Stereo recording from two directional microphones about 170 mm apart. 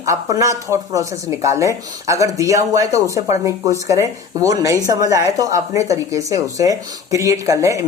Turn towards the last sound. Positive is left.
turn(degrees=-20)  # may be behind; listen again after turning